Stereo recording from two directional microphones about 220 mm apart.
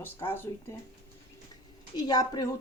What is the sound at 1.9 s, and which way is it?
Speech, 20° left (ahead or behind).